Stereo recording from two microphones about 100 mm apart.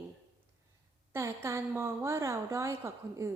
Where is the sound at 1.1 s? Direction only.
30° right (ahead or behind).